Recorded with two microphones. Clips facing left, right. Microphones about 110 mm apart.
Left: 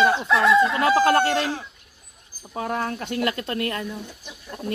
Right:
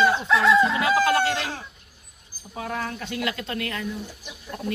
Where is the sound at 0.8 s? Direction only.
45° left (ahead or behind).